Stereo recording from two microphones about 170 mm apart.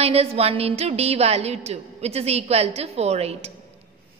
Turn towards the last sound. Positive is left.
turn(degrees=-40)  # may be behind; listen again after turning